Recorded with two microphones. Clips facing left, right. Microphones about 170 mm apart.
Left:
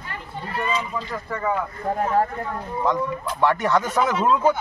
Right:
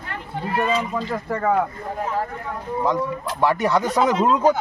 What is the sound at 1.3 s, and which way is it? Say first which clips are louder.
Speech: right 4 dB; 55° right (ahead or behind).